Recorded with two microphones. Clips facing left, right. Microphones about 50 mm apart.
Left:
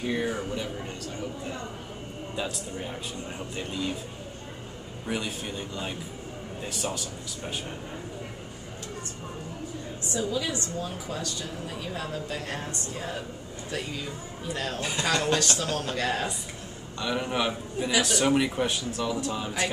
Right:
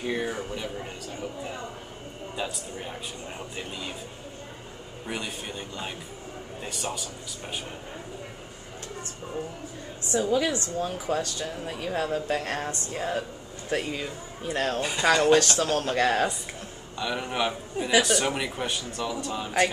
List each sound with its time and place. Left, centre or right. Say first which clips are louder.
0.0 s a man's voice: left 1 dB; centre
2.3 s a man's voice: even; centre
5.0 s a man's voice: left 2 dB; centre
10.1 s speech: right 5 dB; right
14.8 s a man's voice: right 2 dB; centre
15.3 s speech: right 5 dB; right
17.0 s a man's voice: even; centre